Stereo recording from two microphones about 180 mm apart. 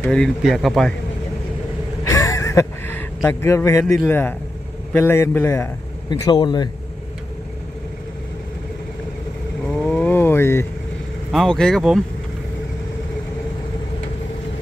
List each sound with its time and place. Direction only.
0.0 s speech: 5° left (ahead or behind)
2.0 s a man's voice: 20° left (ahead or behind)
9.7 s roaring cats: 5° left (ahead or behind)
11.3 s speech: 5° left (ahead or behind)